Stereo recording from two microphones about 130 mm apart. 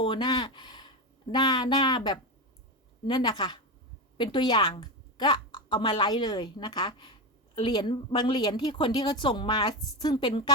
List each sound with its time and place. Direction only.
0.0 s a woman's voice: 35° left (ahead or behind)